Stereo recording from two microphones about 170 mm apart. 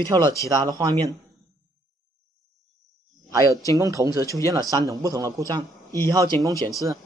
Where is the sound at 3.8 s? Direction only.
20° right (ahead or behind).